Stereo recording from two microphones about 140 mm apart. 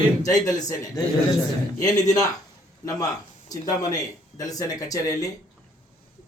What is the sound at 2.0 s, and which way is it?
Speech, 25° left (ahead or behind).